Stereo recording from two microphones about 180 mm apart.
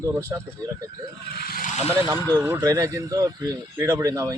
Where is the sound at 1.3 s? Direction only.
55° left (ahead or behind).